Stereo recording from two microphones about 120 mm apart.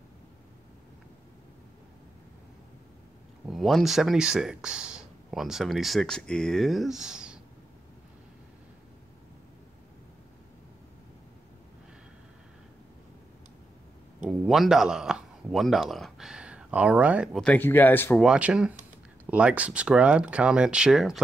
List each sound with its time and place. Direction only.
3.4 s speech: centre (ahead or behind)
14.2 s speech: 5° right (ahead or behind)
17.3 s speech: centre (ahead or behind)
17.6 s speech: 15° left (ahead or behind)
18.2 s speech: 5° right (ahead or behind)